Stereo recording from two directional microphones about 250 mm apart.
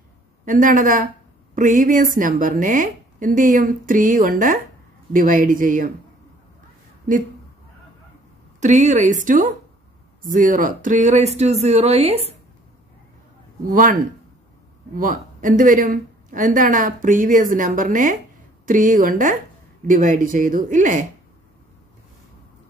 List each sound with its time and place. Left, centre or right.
0.5 s a woman's voice: right
8.5 s speech: right
13.7 s a woman's voice: right
15.0 s a woman's voice: right